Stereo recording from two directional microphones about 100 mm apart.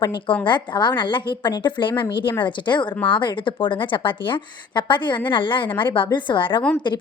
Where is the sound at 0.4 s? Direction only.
50° left (ahead or behind).